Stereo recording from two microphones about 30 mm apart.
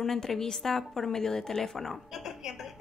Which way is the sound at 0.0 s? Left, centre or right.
Centre.